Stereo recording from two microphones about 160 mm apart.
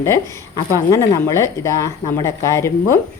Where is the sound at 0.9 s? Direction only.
15° left (ahead or behind).